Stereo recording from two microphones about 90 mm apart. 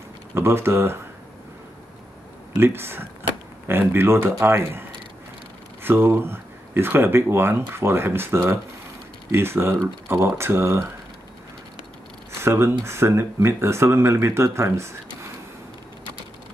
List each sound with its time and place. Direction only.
0.3 s speech: 25° right (ahead or behind)
2.5 s speech: 25° right (ahead or behind)
12.4 s speech: 30° right (ahead or behind)